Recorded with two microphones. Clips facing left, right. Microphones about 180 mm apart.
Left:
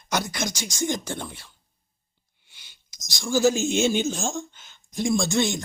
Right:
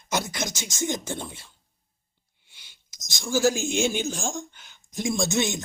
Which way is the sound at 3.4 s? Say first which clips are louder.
Left 3 dB; 10° right (ahead or behind).